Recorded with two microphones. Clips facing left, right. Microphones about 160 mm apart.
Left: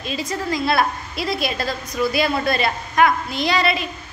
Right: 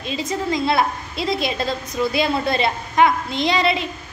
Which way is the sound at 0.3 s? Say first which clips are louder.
Right 1 dB; 20° right (ahead or behind).